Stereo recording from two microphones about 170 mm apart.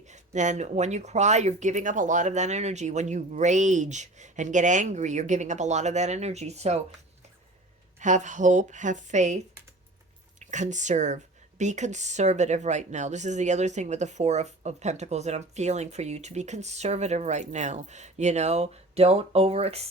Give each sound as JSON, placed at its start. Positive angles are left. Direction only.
{"t": 0.1, "sound": "speech", "side_deg": -45}
{"t": 7.9, "sound": "speech", "side_deg": -45}
{"t": 10.4, "sound": "speech", "side_deg": -45}